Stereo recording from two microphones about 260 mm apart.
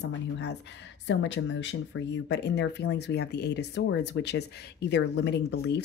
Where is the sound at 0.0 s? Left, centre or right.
Left.